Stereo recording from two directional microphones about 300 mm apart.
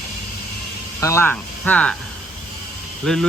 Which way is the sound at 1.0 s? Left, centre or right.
Centre.